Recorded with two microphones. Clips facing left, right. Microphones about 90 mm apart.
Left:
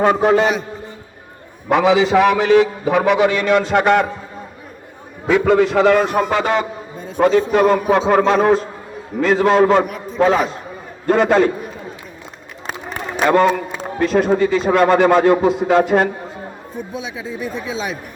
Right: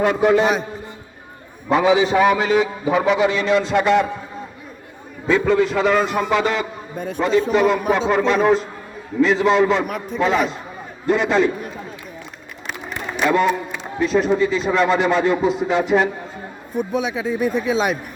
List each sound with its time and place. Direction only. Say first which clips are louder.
0.0 s a man's voice: left 2 dB; 40° left (ahead or behind)
1.7 s a man's voice: left 2 dB; 90° left; by 4.0 s 55° left (ahead or behind)
5.2 s a man's voice: left 3 dB; 70° left (ahead or behind)
6.4 s a man's voice: left 3 dB; 35° left (ahead or behind)
7.2 s a man's voice: left 3 dB; 60° left (ahead or behind)
9.2 s a man's voice: left 2 dB; 50° left (ahead or behind)
12.6 s a sound: left 2 dB; 45° left (ahead or behind)
14.0 s a man's voice: left 2 dB; 55° left (ahead or behind)
16.7 s speech: right 7 dB; 65° right (ahead or behind)